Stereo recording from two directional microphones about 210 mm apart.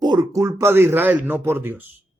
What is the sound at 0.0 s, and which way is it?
A woman's voice, 20° right (ahead or behind).